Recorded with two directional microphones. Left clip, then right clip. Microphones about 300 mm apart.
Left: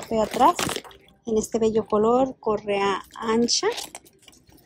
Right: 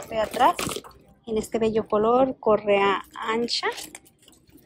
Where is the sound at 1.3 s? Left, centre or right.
Centre.